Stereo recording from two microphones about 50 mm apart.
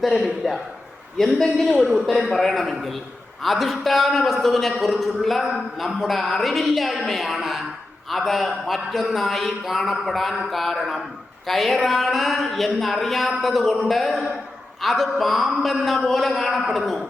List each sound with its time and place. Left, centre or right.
0.0 s a man's voice: centre